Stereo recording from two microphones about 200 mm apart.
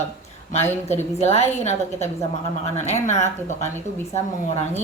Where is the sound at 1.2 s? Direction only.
35° left (ahead or behind).